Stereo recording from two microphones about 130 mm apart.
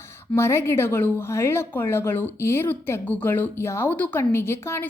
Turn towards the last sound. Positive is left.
turn(degrees=20)  # may be behind; listen again after turning